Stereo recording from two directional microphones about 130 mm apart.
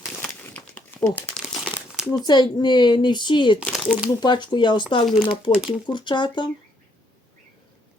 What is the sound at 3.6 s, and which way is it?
Speech, 5° left (ahead or behind).